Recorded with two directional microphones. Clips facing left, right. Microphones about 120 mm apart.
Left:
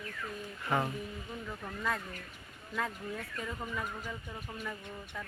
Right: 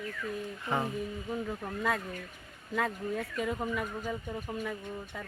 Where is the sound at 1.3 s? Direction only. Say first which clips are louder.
Right 6 dB; 50° right (ahead or behind).